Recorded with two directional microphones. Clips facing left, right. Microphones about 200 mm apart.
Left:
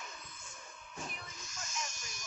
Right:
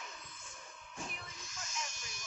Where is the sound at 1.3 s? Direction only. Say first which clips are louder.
Left 1 dB; 45° left (ahead or behind).